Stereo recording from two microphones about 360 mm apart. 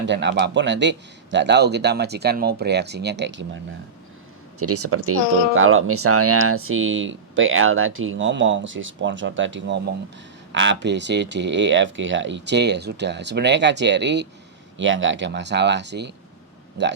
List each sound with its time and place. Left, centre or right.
0.0 s speech: right
4.6 s speech: right